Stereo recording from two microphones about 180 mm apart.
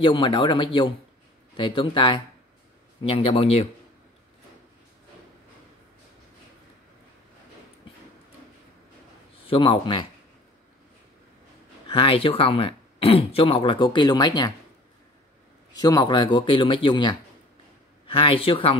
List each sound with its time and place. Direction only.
0.0 s speech: 25° left (ahead or behind)
9.5 s speech: 30° left (ahead or behind)
11.9 s speech: 30° left (ahead or behind)
15.7 s speech: 20° left (ahead or behind)